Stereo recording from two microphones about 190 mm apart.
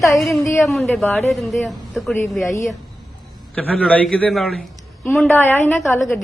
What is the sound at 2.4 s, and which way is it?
A woman's voice, 15° left (ahead or behind).